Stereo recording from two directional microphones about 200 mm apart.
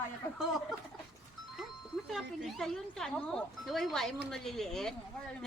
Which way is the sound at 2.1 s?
Centre (ahead or behind).